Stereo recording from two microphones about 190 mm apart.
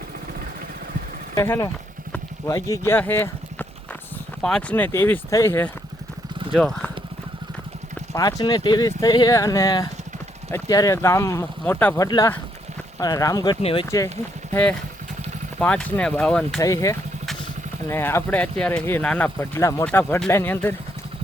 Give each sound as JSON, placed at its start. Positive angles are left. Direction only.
{"t": 1.4, "sound": "speech", "side_deg": 15}
{"t": 8.1, "sound": "speech", "side_deg": 20}
{"t": 13.8, "sound": "speech", "side_deg": 15}
{"t": 16.6, "sound": "speech", "side_deg": 15}